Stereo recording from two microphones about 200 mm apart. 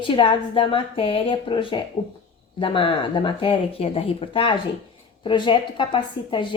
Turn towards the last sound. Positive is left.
turn(degrees=25)  # may be behind; listen again after turning